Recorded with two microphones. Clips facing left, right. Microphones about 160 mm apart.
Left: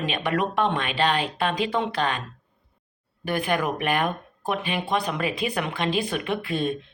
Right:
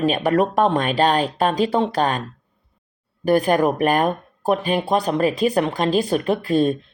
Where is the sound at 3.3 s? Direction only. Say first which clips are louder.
Right 8 dB; 40° right (ahead or behind).